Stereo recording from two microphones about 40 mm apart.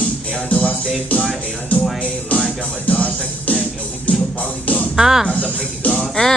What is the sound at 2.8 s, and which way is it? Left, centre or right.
Music, left.